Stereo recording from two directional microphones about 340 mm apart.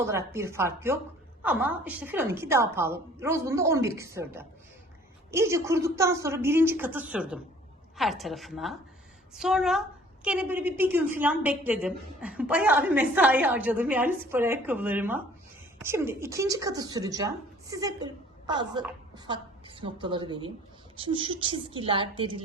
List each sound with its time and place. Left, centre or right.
0.0 s a woman's voice: centre